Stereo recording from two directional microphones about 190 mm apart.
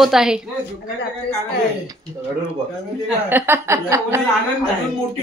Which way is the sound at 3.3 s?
10° right (ahead or behind).